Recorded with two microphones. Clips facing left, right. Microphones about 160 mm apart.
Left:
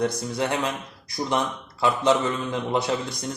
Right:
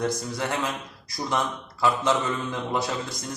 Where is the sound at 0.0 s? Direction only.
20° left (ahead or behind).